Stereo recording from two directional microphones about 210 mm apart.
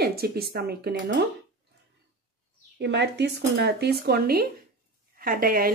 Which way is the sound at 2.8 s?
55° right (ahead or behind).